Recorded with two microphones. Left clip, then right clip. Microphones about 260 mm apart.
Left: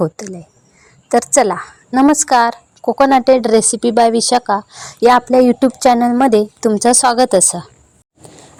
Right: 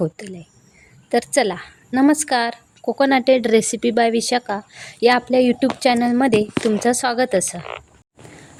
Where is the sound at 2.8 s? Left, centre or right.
Centre.